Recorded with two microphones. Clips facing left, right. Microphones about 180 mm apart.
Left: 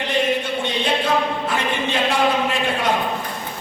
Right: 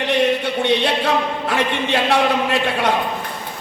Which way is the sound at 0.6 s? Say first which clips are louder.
Right 4 dB; 70° right (ahead or behind).